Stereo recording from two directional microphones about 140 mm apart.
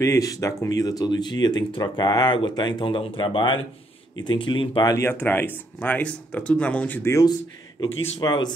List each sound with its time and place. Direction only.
0.0 s speech: 25° left (ahead or behind)
4.9 s speech: 15° left (ahead or behind)